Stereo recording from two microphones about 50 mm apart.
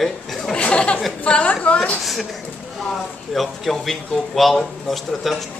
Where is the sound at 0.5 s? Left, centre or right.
Left.